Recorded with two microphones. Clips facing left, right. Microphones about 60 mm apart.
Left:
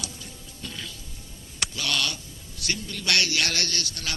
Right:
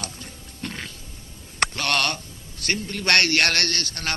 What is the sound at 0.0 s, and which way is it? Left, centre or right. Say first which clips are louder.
Music: right 3 dB; right.